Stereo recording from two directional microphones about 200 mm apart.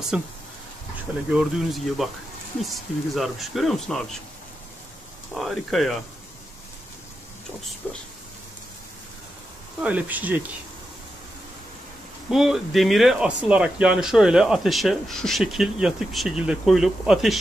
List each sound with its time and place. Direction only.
0.1 s speech: 5° right (ahead or behind)
1.3 s speech: centre (ahead or behind)
5.3 s speech: centre (ahead or behind)
7.8 s speech: 10° left (ahead or behind)
9.8 s speech: 10° right (ahead or behind)
12.3 s speech: centre (ahead or behind)